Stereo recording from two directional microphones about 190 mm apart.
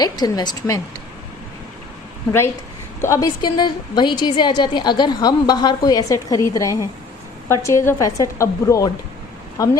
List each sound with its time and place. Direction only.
0.0 s a woman's voice: 20° left (ahead or behind)
3.0 s a woman's voice: 15° left (ahead or behind)